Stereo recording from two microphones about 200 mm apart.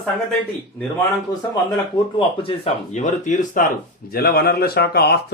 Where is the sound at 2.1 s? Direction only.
25° left (ahead or behind).